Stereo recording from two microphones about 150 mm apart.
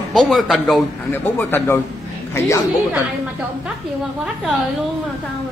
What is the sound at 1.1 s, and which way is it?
Speech, 15° left (ahead or behind).